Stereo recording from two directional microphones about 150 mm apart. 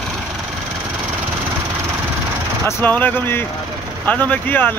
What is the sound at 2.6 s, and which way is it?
Speech, 10° left (ahead or behind).